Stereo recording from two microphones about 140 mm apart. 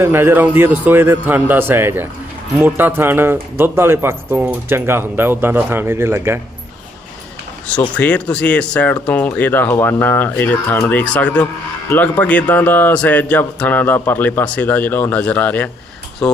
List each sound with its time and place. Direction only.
0.0 s speech: 15° right (ahead or behind)
7.9 s speech: 10° left (ahead or behind)